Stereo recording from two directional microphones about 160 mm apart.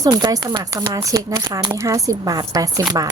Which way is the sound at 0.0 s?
20° right (ahead or behind).